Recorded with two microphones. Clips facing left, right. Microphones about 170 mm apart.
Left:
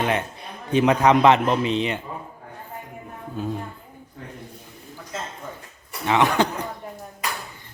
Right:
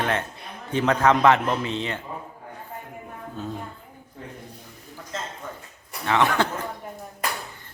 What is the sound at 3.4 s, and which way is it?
Speech, 10° left (ahead or behind).